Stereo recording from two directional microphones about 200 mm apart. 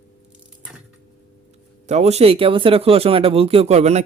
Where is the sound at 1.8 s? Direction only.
35° right (ahead or behind).